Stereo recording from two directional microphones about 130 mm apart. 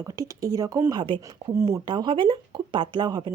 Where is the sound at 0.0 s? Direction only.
25° right (ahead or behind).